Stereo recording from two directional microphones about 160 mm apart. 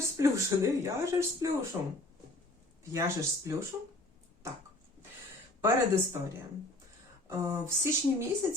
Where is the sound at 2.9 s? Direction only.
15° right (ahead or behind).